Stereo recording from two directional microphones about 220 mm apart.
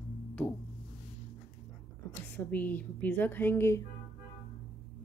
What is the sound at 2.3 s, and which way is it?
Speech, 10° left (ahead or behind).